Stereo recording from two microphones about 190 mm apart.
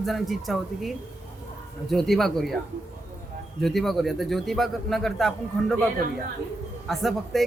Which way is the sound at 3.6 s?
Centre (ahead or behind).